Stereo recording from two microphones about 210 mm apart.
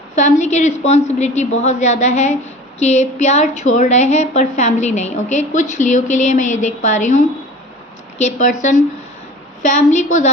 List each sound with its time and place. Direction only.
0.2 s a woman's voice: 35° left (ahead or behind)
8.2 s a woman's voice: 35° left (ahead or behind)
9.6 s a woman's voice: 35° left (ahead or behind)